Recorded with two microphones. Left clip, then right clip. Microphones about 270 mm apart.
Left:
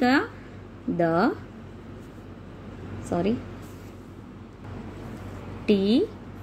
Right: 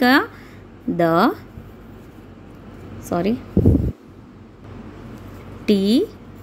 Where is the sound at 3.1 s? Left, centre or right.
Right.